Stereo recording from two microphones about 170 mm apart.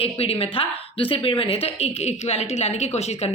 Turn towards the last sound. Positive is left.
turn(degrees=40)  # may be behind; listen again after turning